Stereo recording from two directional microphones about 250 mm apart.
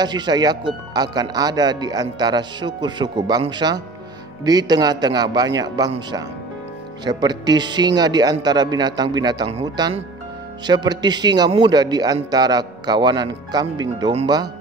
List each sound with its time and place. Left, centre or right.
0.0 s speech: centre